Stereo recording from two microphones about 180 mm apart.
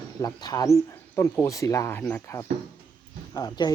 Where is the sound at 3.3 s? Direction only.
20° left (ahead or behind).